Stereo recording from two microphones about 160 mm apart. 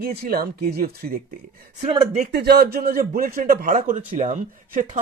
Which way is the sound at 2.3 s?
80° right.